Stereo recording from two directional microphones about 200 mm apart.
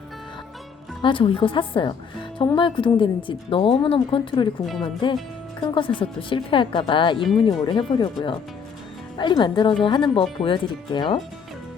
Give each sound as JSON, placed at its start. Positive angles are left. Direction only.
{"t": 1.0, "sound": "a woman's voice", "side_deg": 25}
{"t": 4.6, "sound": "speech", "side_deg": 0}
{"t": 5.5, "sound": "a woman's voice", "side_deg": 25}